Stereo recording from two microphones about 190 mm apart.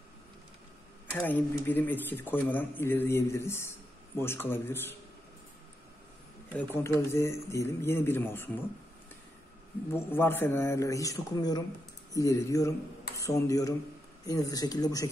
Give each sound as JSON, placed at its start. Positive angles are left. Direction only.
{"t": 1.1, "sound": "speech", "side_deg": 10}
{"t": 6.5, "sound": "speech", "side_deg": 10}
{"t": 9.9, "sound": "speech", "side_deg": 10}